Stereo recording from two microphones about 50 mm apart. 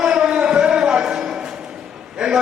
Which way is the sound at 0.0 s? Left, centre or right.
Centre.